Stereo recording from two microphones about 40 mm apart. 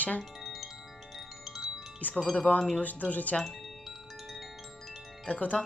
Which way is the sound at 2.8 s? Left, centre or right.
Left.